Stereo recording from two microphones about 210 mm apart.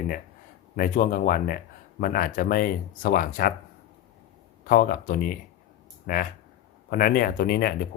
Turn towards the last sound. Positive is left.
turn(degrees=45)  # may be behind; listen again after turning